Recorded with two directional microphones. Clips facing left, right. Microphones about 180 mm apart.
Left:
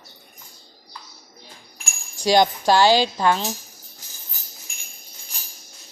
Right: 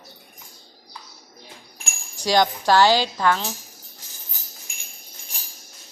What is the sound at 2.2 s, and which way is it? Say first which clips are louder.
Speech: left 2 dB; 15° left (ahead or behind).